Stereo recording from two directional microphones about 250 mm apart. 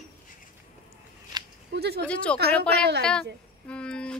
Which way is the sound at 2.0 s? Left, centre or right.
Centre.